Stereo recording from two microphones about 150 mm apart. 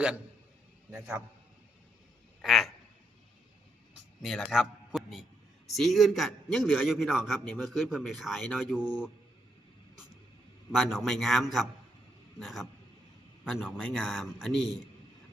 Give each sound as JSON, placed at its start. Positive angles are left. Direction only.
{"t": 0.9, "sound": "a man's voice", "side_deg": -15}
{"t": 2.4, "sound": "frog", "side_deg": 0}
{"t": 4.4, "sound": "a man's voice", "side_deg": 0}
{"t": 10.8, "sound": "a man's voice", "side_deg": 0}